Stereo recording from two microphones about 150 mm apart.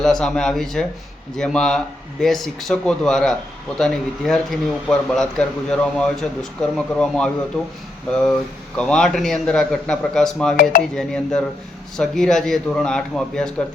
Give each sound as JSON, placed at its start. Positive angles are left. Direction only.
{"t": 0.0, "sound": "speech", "side_deg": 5}
{"t": 10.6, "sound": "speech", "side_deg": 70}
{"t": 10.9, "sound": "speech", "side_deg": 5}